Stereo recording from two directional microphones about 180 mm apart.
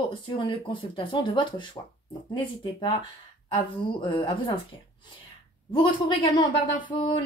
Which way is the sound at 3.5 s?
30° left (ahead or behind).